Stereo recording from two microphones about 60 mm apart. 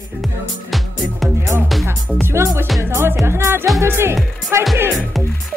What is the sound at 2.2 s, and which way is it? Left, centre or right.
A woman's voice, right.